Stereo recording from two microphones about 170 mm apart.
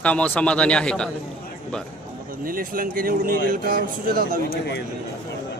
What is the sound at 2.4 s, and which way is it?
Speech, 55° right (ahead or behind).